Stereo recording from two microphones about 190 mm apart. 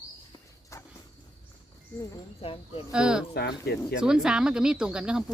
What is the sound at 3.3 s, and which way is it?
Speech, 60° left (ahead or behind).